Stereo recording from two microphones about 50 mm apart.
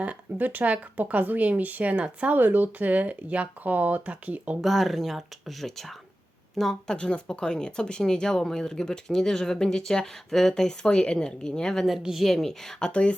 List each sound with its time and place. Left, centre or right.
0.0 s speech: right
4.6 s speech: centre
6.9 s speech: centre
11.9 s speech: centre
12.9 s speech: left